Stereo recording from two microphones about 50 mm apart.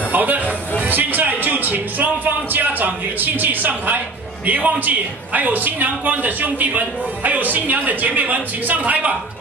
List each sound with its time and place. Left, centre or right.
0.1 s music: right
0.8 s speech: right